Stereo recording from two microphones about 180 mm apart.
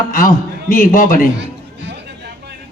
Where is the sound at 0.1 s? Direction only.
50° left (ahead or behind).